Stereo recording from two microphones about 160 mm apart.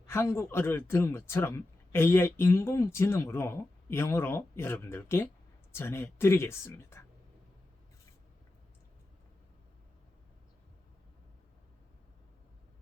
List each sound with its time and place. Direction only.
0.0 s speech: 15° left (ahead or behind)